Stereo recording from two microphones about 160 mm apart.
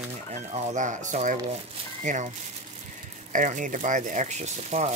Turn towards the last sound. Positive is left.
turn(degrees=-45)  # may be behind; listen again after turning